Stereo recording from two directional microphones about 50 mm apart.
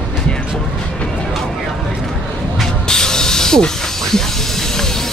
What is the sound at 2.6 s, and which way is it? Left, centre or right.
Hiss, centre.